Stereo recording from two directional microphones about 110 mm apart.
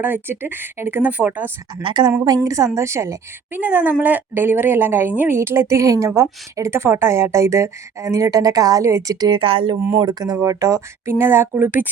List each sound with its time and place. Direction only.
0.0 s speech: 20° right (ahead or behind)
1.8 s a woman's voice: 45° right (ahead or behind)
2.2 s a woman's voice: 35° right (ahead or behind)
9.3 s speech: 55° right (ahead or behind)
10.0 s a woman's voice: 40° right (ahead or behind); by 11.9 s 15° right (ahead or behind)